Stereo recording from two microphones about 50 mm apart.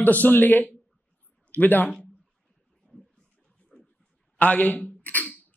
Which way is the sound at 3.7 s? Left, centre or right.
Left.